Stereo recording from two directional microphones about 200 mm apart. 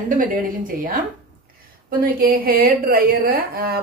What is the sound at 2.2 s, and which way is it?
A woman's voice, 50° right (ahead or behind).